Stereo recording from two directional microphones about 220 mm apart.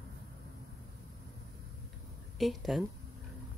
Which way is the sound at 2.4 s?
Centre (ahead or behind).